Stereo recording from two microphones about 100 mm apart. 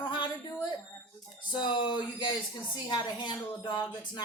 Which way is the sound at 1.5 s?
50° left (ahead or behind).